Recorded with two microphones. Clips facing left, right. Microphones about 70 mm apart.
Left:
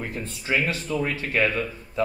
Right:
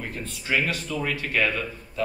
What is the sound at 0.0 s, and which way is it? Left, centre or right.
Speech, left.